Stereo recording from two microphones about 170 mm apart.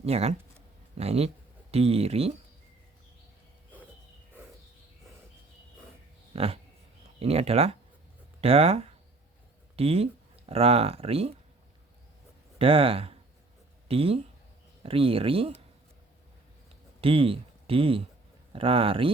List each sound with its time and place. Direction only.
0.0 s speech: 35° right (ahead or behind)
6.3 s dog: 35° right (ahead or behind)
7.2 s speech: 35° right (ahead or behind)
12.5 s speech: 35° right (ahead or behind)
17.0 s speech: 30° right (ahead or behind)